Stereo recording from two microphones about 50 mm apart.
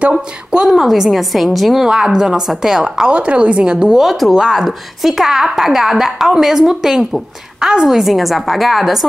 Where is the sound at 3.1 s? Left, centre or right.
Right.